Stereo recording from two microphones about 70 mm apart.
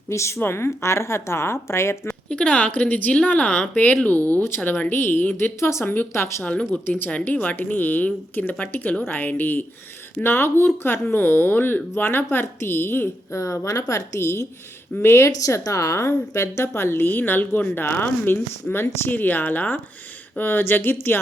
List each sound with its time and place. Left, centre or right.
0.1 s a woman's voice: left
2.3 s a woman's voice: centre
5.5 s a woman's voice: left
5.8 s a woman's voice: left
13.3 s a woman's voice: left
15.4 s a woman's voice: left